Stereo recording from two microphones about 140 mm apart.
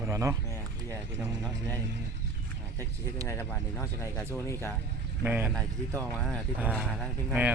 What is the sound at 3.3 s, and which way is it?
Speech, 20° left (ahead or behind).